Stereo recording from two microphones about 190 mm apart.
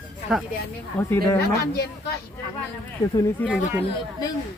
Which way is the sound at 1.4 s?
60° left (ahead or behind).